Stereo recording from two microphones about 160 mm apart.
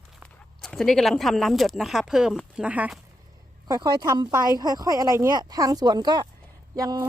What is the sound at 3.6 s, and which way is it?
Speech, 25° right (ahead or behind).